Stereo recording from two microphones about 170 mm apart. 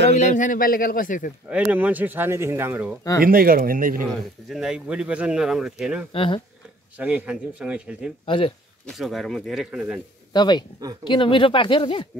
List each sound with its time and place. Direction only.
0.1 s speech: 45° left (ahead or behind)
1.5 s speech: 5° right (ahead or behind)
3.3 s speech: 60° right (ahead or behind)
4.1 s speech: centre (ahead or behind)
6.1 s a man's voice: 30° left (ahead or behind)
7.0 s speech: 5° right (ahead or behind)
8.3 s a man's voice: 30° left (ahead or behind)
8.8 s speech: centre (ahead or behind)
10.3 s speech: 25° left (ahead or behind)